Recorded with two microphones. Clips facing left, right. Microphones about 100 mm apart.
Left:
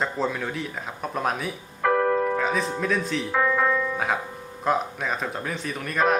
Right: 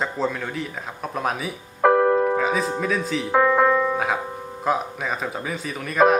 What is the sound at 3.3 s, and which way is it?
Music, 35° right (ahead or behind).